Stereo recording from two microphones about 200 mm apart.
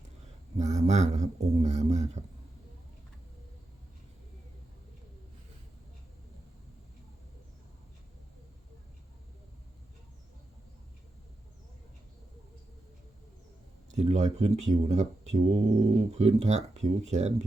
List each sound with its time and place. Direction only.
0.6 s speech: 35° right (ahead or behind)
13.9 s speech: 35° right (ahead or behind)